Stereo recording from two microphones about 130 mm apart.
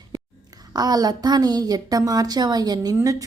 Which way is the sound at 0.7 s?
30° right (ahead or behind).